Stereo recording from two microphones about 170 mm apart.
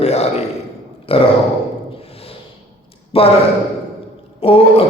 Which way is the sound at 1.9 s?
35° left (ahead or behind).